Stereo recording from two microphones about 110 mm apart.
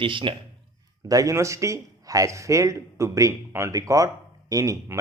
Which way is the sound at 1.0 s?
30° right (ahead or behind).